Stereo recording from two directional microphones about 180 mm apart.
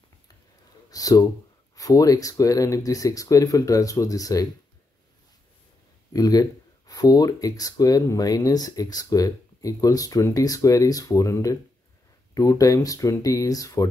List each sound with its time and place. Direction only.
0.8 s a sound: 20° left (ahead or behind)
1.8 s speech: 20° left (ahead or behind)
6.1 s speech: 20° left (ahead or behind)